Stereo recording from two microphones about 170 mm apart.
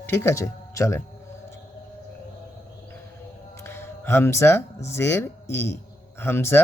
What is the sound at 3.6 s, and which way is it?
Speech, 15° left (ahead or behind).